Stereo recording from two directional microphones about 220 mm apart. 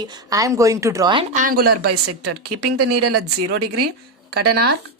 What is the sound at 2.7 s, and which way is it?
Speech, 90° right.